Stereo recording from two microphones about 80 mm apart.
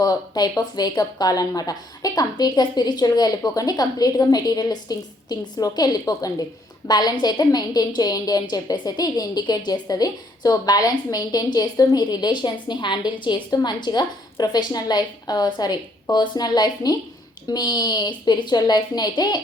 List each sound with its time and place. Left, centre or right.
0.0 s speech: left